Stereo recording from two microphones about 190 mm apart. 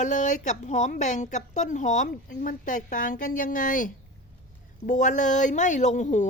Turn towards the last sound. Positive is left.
turn(degrees=40)  # may be behind; listen again after turning